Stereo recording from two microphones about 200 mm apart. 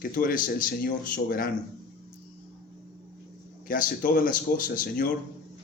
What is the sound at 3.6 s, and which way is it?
Speech, 45° left (ahead or behind).